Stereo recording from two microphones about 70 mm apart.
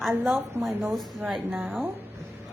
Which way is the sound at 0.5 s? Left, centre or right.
Right.